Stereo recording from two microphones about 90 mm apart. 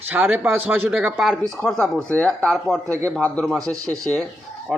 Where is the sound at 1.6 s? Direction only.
5° left (ahead or behind).